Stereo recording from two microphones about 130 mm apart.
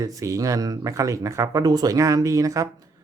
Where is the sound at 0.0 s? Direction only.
25° right (ahead or behind).